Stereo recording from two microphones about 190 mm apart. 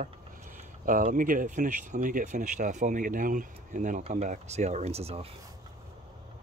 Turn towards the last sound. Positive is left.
turn(degrees=-30)  # may be behind; listen again after turning